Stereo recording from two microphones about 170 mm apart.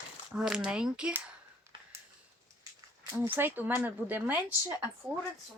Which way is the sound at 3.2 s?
10° right (ahead or behind).